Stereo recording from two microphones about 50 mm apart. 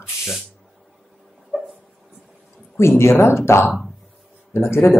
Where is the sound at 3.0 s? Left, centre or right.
Left.